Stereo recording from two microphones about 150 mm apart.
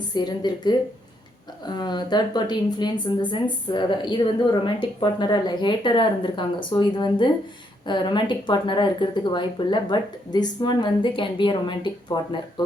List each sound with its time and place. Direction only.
0.1 s a woman's voice: 30° left (ahead or behind)